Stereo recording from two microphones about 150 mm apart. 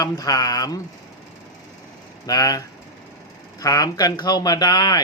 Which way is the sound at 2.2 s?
25° left (ahead or behind).